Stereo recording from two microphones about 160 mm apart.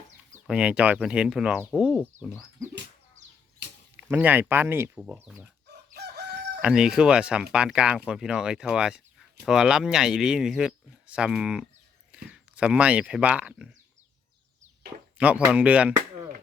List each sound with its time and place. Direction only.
0.4 s speech: 5° right (ahead or behind)
3.9 s speech: 10° right (ahead or behind)
5.9 s crowing: 90° right
6.6 s speech: 5° right (ahead or behind)
15.2 s speech: 10° right (ahead or behind)